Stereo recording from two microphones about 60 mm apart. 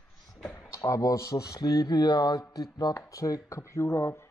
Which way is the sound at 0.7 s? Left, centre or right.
Left.